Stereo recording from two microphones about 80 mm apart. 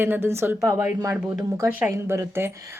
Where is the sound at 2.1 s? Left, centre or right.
Right.